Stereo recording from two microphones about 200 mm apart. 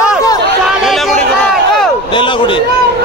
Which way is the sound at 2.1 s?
25° left (ahead or behind).